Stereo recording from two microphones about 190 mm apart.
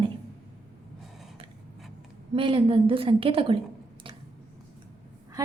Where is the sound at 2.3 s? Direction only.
30° right (ahead or behind).